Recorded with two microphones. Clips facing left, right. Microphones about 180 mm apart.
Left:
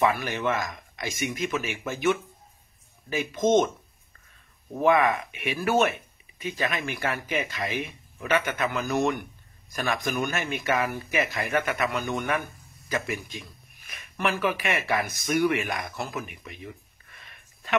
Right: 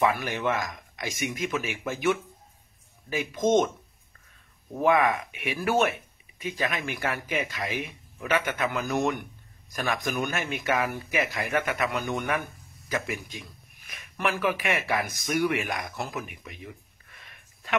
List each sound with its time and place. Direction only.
0.0 s speech: 10° right (ahead or behind)
4.8 s speech: 10° right (ahead or behind)
12.8 s a sound: 10° right (ahead or behind)
13.8 s speech: 10° right (ahead or behind)